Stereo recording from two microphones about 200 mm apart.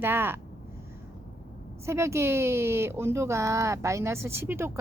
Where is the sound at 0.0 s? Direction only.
10° right (ahead or behind).